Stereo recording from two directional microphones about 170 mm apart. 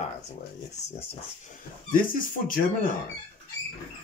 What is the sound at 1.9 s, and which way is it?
Speech, 55° left (ahead or behind).